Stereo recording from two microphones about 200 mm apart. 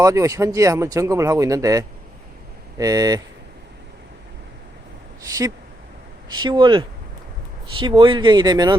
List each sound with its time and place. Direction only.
0.0 s speech: 15° right (ahead or behind)
6.2 s speech: 20° right (ahead or behind)